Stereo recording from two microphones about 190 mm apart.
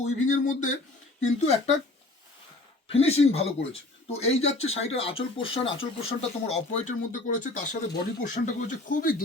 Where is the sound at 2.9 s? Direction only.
35° left (ahead or behind).